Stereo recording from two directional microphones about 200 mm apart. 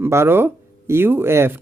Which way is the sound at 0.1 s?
10° right (ahead or behind).